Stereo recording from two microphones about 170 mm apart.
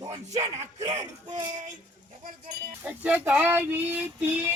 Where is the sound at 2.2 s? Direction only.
60° right (ahead or behind).